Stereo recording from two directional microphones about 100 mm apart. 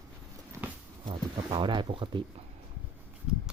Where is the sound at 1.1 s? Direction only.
55° right (ahead or behind).